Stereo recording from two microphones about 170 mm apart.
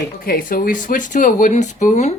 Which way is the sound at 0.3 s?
55° left (ahead or behind).